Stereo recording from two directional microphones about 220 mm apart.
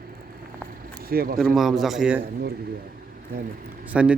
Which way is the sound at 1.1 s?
40° right (ahead or behind).